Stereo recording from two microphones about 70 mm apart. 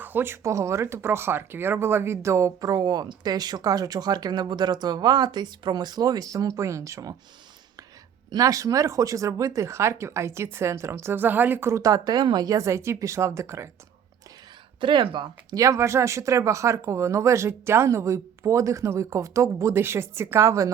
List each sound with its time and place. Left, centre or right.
0.0 s a sound: right
0.4 s speech: right
8.3 s speech: right
11.8 s speech: right
12.5 s speech: right
14.9 s speech: right
15.6 s speech: right